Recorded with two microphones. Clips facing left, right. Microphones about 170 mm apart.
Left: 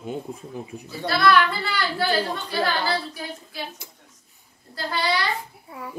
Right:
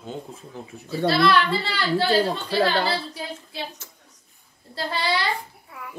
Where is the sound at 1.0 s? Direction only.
25° right (ahead or behind).